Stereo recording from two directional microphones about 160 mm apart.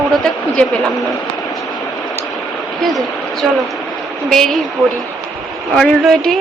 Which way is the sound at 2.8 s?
Centre (ahead or behind).